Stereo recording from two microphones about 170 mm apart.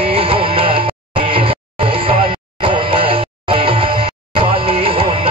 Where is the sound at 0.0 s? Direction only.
35° right (ahead or behind).